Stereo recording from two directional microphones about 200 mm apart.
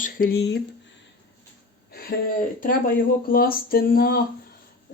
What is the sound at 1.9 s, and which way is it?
Speech, 50° left (ahead or behind).